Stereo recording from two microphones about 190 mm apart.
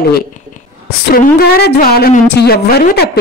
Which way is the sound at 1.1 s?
50° left (ahead or behind).